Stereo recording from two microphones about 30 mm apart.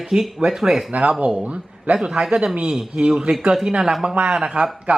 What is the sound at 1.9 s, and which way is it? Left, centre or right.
Speech, right.